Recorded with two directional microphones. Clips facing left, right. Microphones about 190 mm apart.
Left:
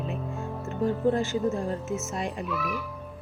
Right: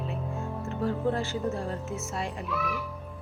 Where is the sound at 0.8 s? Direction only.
15° left (ahead or behind).